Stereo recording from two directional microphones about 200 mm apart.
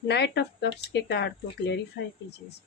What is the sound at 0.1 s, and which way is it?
Speech, 55° left (ahead or behind).